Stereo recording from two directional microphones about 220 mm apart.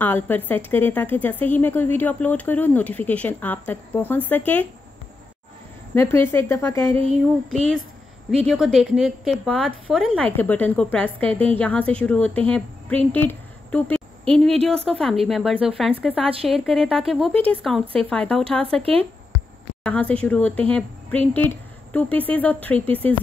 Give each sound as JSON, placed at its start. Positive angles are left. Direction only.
{"t": 0.0, "sound": "a woman's voice", "side_deg": 10}
{"t": 5.9, "sound": "a woman's voice", "side_deg": 10}
{"t": 8.5, "sound": "a woman's voice", "side_deg": 0}
{"t": 18.8, "sound": "speech", "side_deg": -25}
{"t": 19.8, "sound": "a woman's voice", "side_deg": 5}